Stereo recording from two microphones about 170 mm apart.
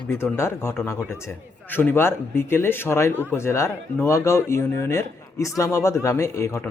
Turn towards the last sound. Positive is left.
turn(degrees=15)  # may be behind; listen again after turning